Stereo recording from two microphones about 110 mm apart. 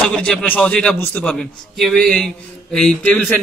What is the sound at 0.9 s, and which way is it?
Speech, 20° left (ahead or behind).